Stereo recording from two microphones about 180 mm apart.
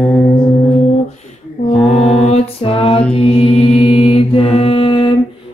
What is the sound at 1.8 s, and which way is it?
Mantra, 35° left (ahead or behind).